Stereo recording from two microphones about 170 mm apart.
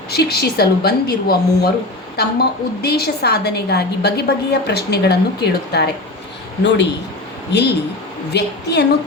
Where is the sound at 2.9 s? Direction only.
70° left (ahead or behind).